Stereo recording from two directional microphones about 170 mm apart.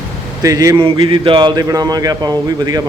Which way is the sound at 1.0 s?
30° right (ahead or behind).